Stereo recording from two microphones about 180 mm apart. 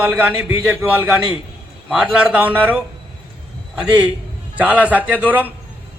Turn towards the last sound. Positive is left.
turn(degrees=-10)  # may be behind; listen again after turning